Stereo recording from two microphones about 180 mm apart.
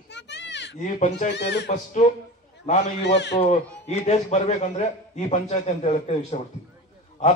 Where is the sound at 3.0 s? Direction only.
70° left (ahead or behind).